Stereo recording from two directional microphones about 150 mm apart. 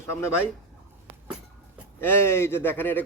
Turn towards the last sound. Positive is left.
turn(degrees=15)  # may be behind; listen again after turning